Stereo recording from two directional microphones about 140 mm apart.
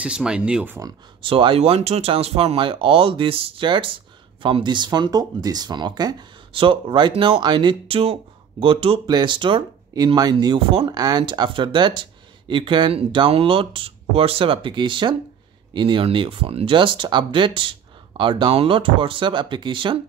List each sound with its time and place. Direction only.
0.0 s speech: 5° right (ahead or behind)
1.2 s speech: 40° right (ahead or behind)